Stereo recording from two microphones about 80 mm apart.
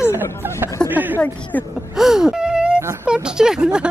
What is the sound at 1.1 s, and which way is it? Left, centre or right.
Speech, left.